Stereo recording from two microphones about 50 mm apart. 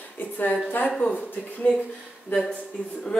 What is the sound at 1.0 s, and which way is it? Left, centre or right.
Speech, left.